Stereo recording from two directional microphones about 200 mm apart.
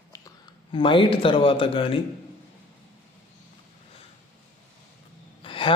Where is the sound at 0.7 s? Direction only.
25° left (ahead or behind).